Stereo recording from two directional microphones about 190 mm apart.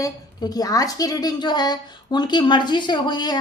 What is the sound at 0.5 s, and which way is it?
A woman's voice, 20° left (ahead or behind).